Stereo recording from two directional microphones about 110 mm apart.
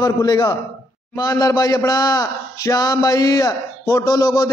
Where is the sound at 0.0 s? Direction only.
35° left (ahead or behind).